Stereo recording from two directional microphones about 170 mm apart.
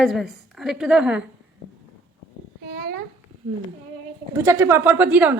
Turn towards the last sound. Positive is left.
turn(degrees=-10)  # may be behind; listen again after turning